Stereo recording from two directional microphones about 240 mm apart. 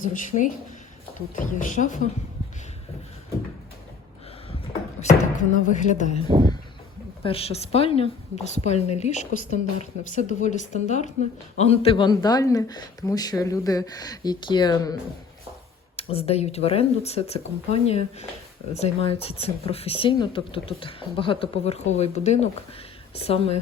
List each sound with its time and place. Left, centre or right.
0.0 s speech: left
4.9 s a woman's voice: left
16.0 s a woman's voice: left